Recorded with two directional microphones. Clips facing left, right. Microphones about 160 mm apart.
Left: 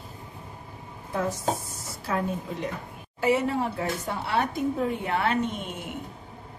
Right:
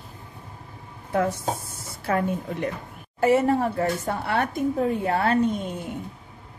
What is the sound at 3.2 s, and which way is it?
A woman's voice, 45° right (ahead or behind).